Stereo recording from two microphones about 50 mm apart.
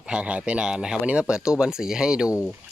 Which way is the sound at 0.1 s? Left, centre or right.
Right.